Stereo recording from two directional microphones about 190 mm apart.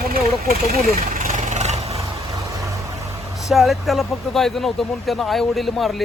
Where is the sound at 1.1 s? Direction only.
45° right (ahead or behind).